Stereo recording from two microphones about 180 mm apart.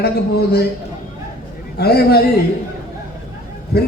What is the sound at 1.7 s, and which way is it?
Speech, 60° left (ahead or behind).